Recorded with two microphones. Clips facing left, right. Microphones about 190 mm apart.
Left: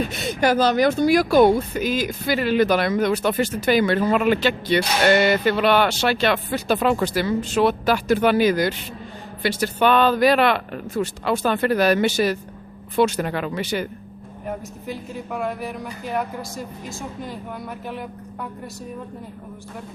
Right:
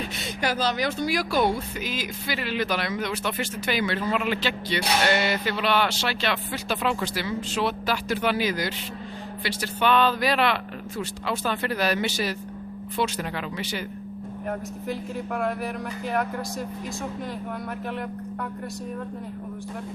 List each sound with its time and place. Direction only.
0.0 s speech: 45° left (ahead or behind)
14.8 s speech: centre (ahead or behind)